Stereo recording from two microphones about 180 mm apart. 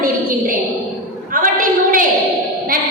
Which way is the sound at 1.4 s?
50° right (ahead or behind).